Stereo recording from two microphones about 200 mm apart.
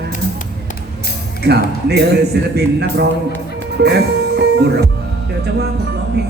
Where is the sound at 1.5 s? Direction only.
55° right (ahead or behind).